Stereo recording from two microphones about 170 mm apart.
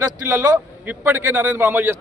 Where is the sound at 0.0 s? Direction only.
15° right (ahead or behind).